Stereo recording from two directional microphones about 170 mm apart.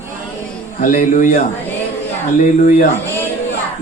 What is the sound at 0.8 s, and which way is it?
Speech, 50° left (ahead or behind).